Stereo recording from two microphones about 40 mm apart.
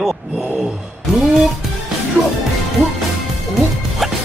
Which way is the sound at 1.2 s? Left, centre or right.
Centre.